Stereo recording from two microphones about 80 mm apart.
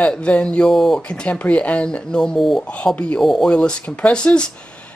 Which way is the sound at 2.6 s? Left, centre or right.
Centre.